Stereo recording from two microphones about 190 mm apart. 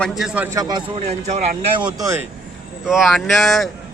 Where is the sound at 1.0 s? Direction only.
35° right (ahead or behind).